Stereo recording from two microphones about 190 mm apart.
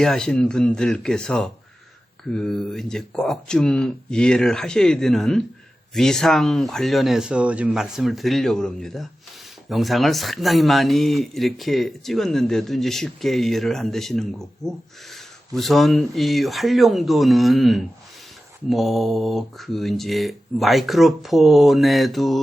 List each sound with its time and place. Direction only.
0.0 s speech: 5° left (ahead or behind)